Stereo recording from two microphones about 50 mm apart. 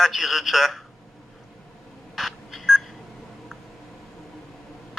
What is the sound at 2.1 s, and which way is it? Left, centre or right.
Telephone dialing, centre.